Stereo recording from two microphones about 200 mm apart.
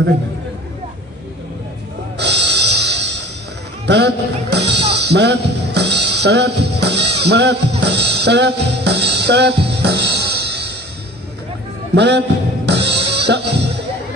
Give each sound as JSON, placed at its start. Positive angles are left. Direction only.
{"t": 2.1, "sound": "music", "side_deg": -60}
{"t": 3.8, "sound": "speech", "side_deg": -60}
{"t": 11.9, "sound": "a man's voice", "side_deg": -60}
{"t": 12.6, "sound": "music", "side_deg": -60}